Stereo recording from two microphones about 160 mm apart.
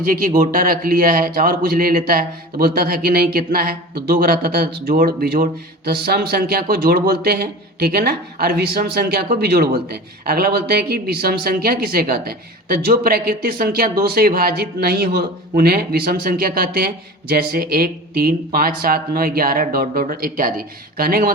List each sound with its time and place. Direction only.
0.0 s speech: 65° right (ahead or behind)